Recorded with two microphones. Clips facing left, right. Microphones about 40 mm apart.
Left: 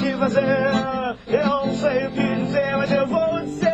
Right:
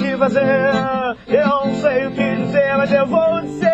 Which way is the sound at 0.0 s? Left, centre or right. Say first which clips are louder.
Right 4 dB; right.